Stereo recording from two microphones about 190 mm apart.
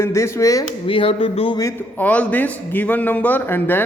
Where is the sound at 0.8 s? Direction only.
30° left (ahead or behind).